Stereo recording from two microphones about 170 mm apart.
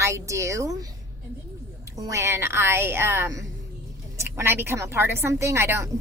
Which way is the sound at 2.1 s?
15° right (ahead or behind).